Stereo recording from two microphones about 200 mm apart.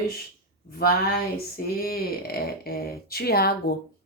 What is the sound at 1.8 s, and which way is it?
Speech, 50° left (ahead or behind).